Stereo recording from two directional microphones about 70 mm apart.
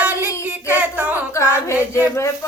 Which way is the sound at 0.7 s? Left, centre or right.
Right.